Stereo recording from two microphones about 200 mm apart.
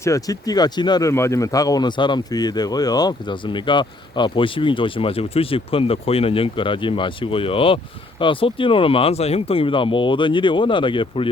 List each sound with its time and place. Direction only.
0.0 s speech: 15° left (ahead or behind)